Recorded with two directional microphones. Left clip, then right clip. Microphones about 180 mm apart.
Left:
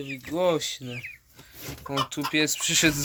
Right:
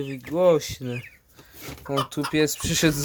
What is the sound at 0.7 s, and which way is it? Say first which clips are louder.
Speech: right 2 dB; 40° right (ahead or behind).